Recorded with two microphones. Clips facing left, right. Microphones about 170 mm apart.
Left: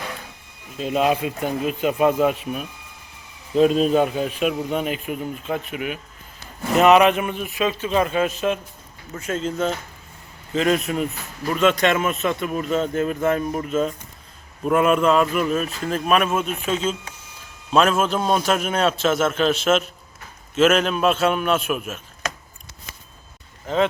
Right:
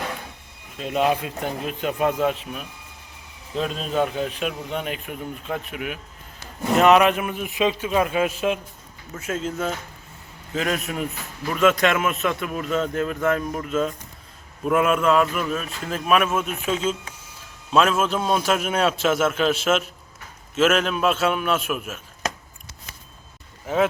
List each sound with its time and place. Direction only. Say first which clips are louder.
0.8 s a man's voice: left 2 dB; 5° left (ahead or behind)
7.3 s a man's voice: right 1 dB; 15° right (ahead or behind)
11.9 s speech: left 2 dB; 30° left (ahead or behind)
12.1 s a man's voice: left 2 dB; centre (ahead or behind)
13.1 s speech: even; 30° left (ahead or behind)
13.5 s a man's voice: left 2 dB; 5° left (ahead or behind)
23.6 s speech: left 1 dB; 5° right (ahead or behind)